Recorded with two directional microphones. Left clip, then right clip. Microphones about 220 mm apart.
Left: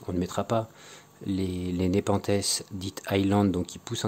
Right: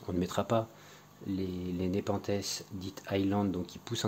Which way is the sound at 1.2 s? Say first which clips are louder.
Left 6 dB; 30° left (ahead or behind).